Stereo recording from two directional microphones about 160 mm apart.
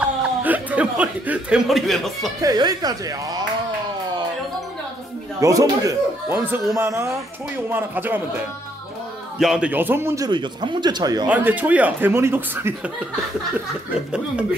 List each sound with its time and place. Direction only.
0.0 s speech: 10° right (ahead or behind)
2.4 s a man's voice: 25° right (ahead or behind)
5.4 s a man's voice: 20° right (ahead or behind)
9.4 s a man's voice: 5° right (ahead or behind); by 11.2 s 25° right (ahead or behind)
11.2 s speech: 10° right (ahead or behind)